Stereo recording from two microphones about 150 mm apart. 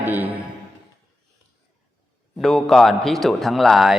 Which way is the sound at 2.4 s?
Centre (ahead or behind).